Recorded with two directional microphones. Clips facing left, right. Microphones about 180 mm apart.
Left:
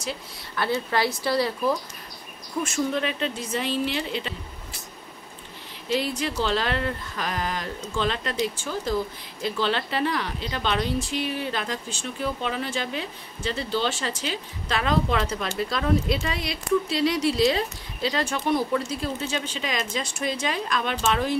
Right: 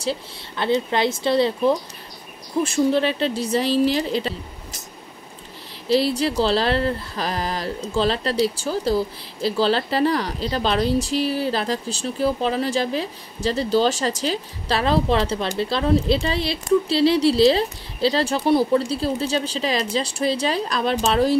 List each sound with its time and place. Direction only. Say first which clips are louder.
0.0 s speech: right 7 dB; 30° right (ahead or behind)
0.7 s speech: right 5 dB; 20° right (ahead or behind); by 4.3 s 35° right (ahead or behind)
5.9 s speech: right 7 dB; 35° right (ahead or behind)